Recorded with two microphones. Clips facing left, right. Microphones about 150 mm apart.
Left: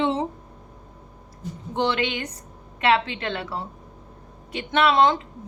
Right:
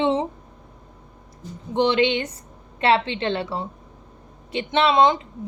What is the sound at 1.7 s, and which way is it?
A woman's voice, 20° right (ahead or behind).